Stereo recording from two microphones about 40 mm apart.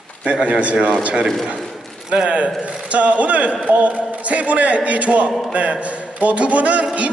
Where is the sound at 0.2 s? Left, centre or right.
Right.